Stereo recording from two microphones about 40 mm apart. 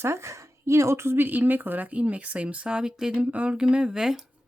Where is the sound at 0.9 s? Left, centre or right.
Right.